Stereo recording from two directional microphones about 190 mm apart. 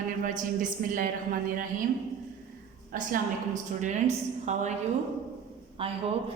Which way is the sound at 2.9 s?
45° right (ahead or behind).